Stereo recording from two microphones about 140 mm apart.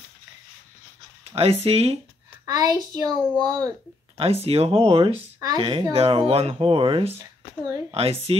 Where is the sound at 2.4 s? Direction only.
25° right (ahead or behind).